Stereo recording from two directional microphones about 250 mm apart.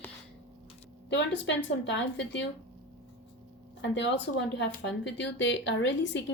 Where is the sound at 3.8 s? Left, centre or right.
Left.